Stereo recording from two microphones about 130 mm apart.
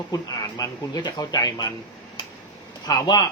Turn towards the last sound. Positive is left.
turn(degrees=30)  # may be behind; listen again after turning